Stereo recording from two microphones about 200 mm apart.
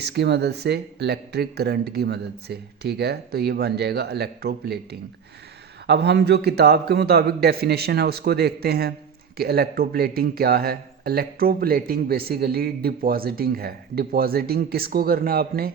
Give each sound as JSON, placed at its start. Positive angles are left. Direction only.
{"t": 0.0, "sound": "a man's voice", "side_deg": -55}